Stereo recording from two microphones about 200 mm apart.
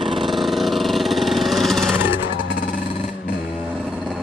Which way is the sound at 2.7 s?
40° left (ahead or behind).